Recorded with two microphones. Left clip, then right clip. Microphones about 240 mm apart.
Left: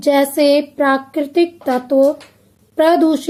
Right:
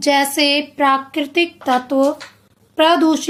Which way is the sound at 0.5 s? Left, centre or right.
Right.